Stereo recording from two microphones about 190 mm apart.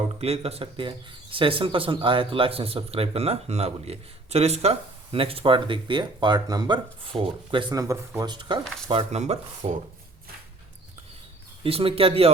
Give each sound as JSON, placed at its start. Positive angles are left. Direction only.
{"t": 0.2, "sound": "speech", "side_deg": -30}
{"t": 11.6, "sound": "speech", "side_deg": -30}